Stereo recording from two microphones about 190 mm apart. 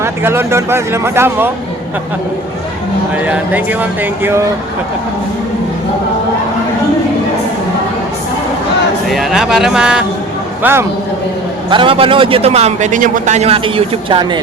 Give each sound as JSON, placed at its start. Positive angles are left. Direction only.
{"t": 0.0, "sound": "speech", "side_deg": -10}
{"t": 3.2, "sound": "speech", "side_deg": -10}
{"t": 9.0, "sound": "a man's voice", "side_deg": 0}
{"t": 11.7, "sound": "speech", "side_deg": -25}